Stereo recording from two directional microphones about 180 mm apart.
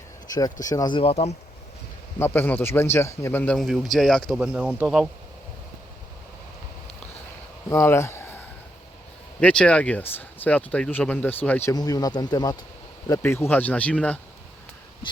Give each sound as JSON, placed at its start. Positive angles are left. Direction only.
{"t": 0.6, "sound": "speech", "side_deg": 20}
{"t": 2.1, "sound": "a man's voice", "side_deg": 10}
{"t": 7.7, "sound": "a sound", "side_deg": 15}
{"t": 9.4, "sound": "speech", "side_deg": 5}
{"t": 11.7, "sound": "speech", "side_deg": 20}